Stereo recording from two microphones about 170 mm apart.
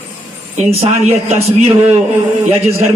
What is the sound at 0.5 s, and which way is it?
A woman's voice, 40° right (ahead or behind).